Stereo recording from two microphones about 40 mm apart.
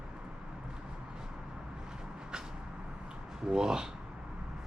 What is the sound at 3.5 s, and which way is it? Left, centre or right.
Speech, centre.